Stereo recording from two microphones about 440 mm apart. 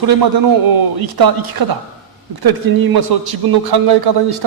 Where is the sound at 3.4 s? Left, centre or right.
Right.